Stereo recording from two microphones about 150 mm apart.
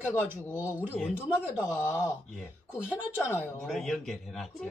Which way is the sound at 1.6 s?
20° left (ahead or behind).